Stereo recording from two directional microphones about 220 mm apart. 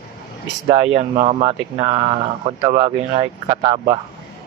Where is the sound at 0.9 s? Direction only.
30° right (ahead or behind).